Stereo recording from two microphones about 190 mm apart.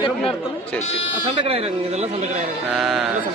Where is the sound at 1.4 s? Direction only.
30° right (ahead or behind).